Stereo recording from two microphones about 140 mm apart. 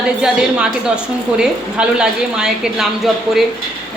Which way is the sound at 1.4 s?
5° right (ahead or behind).